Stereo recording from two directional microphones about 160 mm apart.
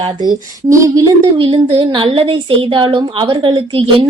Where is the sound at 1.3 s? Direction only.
30° right (ahead or behind).